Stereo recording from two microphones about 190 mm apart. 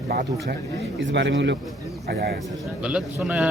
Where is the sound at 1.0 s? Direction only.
70° right (ahead or behind).